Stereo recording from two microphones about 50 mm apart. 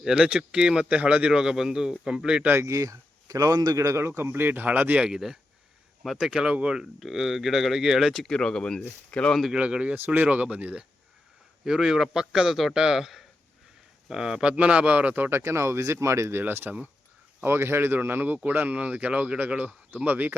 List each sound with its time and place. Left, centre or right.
0.0 s speech: centre
1.3 s speech: centre
2.6 s a man's voice: right
4.3 s speech: right
5.0 s speech: centre
7.0 s speech: centre
8.1 s speech: centre
9.5 s speech: right
11.6 s speech: centre
14.5 s speech: right
15.3 s speech: right
16.5 s speech: right
18.5 s speech: right